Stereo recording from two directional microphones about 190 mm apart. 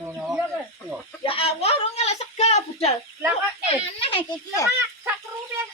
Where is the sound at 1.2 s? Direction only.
30° left (ahead or behind).